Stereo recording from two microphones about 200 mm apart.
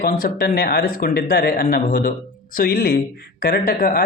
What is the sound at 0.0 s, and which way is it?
Speech, 45° left (ahead or behind).